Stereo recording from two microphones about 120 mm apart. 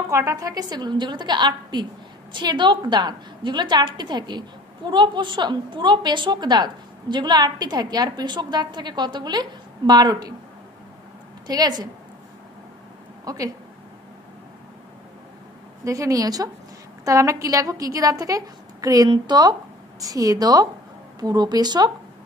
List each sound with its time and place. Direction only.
0.1 s a woman's voice: 25° right (ahead or behind)
11.4 s a woman's voice: 35° right (ahead or behind)
13.2 s speech: 30° right (ahead or behind)
15.8 s a woman's voice: 25° right (ahead or behind)